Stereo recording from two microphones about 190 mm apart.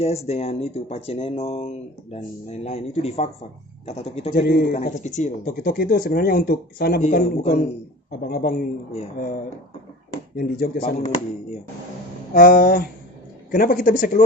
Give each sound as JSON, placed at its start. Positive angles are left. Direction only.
{"t": 0.0, "sound": "speech", "side_deg": 35}
{"t": 4.4, "sound": "speech", "side_deg": 55}
{"t": 4.7, "sound": "speech", "side_deg": 40}
{"t": 7.0, "sound": "speech", "side_deg": 35}
{"t": 8.2, "sound": "speech", "side_deg": 55}
{"t": 8.9, "sound": "speech", "side_deg": 35}
{"t": 10.3, "sound": "speech", "side_deg": 50}
{"t": 12.3, "sound": "speech", "side_deg": 50}